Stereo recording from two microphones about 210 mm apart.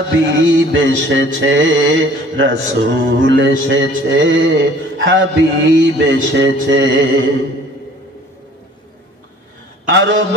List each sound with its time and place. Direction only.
0.3 s mantra: 65° right (ahead or behind)
9.8 s a man's voice: 60° right (ahead or behind)